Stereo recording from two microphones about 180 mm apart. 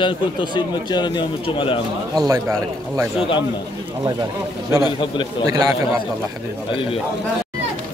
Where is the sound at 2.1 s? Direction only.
20° right (ahead or behind).